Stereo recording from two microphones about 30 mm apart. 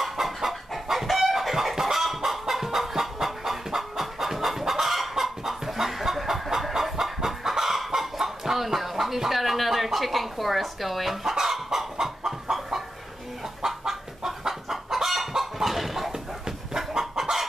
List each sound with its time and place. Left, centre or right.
0.0 s chicken: centre
9.8 s speech: centre
11.3 s chicken: centre
13.6 s chicken: centre
16.1 s a sound: centre
17.2 s chicken: centre